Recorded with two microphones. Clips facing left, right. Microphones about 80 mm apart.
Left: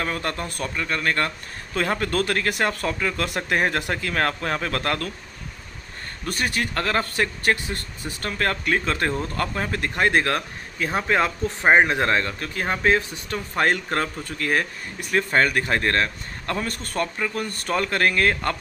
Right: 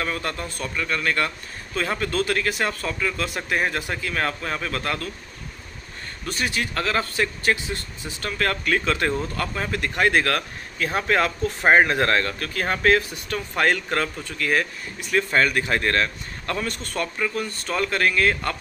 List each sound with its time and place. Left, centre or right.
0.0 s speech: left
1.9 s speech: left
6.2 s speech: left; by 13.0 s centre
13.1 s speech: left
16.6 s speech: left
17.5 s speech: left